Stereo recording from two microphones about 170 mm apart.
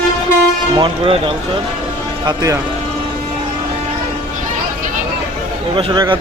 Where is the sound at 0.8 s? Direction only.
35° right (ahead or behind).